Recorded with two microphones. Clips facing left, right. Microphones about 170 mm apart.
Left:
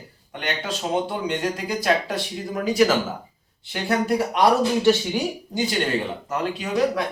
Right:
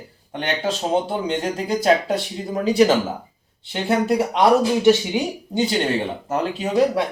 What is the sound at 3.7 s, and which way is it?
Speech, 25° right (ahead or behind).